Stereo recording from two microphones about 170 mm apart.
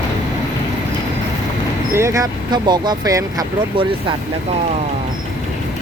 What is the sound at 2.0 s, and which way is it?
Speech, 20° right (ahead or behind).